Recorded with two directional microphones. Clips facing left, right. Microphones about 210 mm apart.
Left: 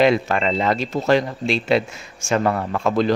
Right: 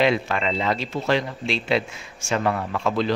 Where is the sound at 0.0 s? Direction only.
45° left (ahead or behind).